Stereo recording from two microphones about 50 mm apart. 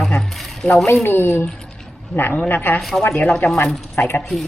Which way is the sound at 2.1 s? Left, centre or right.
Left.